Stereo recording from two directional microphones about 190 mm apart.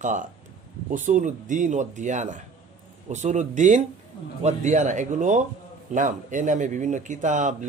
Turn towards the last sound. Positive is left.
turn(degrees=-40)  # may be behind; listen again after turning